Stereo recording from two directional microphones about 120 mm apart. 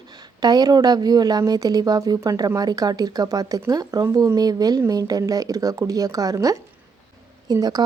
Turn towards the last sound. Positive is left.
turn(degrees=-35)  # may be behind; listen again after turning